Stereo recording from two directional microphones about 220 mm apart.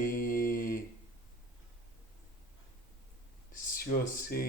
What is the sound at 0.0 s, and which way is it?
Mantra, 40° left (ahead or behind).